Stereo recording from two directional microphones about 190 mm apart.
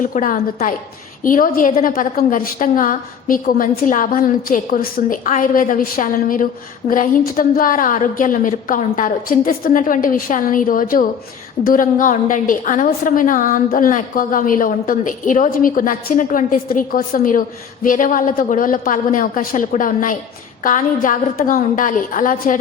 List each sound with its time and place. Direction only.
0.0 s a woman's voice: 45° left (ahead or behind)